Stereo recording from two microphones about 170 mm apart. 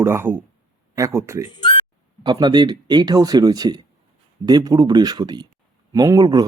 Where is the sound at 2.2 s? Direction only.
25° right (ahead or behind).